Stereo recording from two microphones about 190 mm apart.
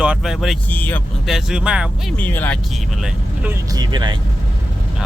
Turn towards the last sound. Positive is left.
turn(degrees=-25)  # may be behind; listen again after turning